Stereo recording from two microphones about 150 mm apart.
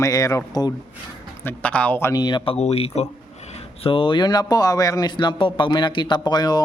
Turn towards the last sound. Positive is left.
turn(degrees=25)  # may be behind; listen again after turning